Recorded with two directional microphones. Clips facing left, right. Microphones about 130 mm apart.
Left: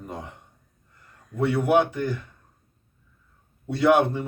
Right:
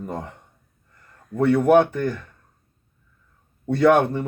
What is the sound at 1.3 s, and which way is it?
Speech, 45° right (ahead or behind).